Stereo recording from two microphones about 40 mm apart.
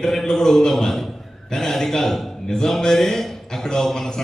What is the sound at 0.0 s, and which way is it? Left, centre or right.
A man's voice, centre.